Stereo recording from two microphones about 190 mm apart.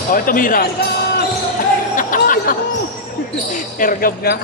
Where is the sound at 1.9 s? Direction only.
45° left (ahead or behind).